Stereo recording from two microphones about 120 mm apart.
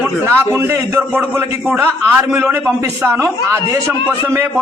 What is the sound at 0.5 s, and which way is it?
A man's voice, 20° right (ahead or behind).